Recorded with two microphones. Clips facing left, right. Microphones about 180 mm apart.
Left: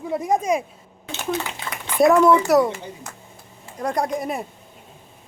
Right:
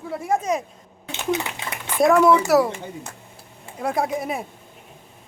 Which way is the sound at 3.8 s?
5° right (ahead or behind).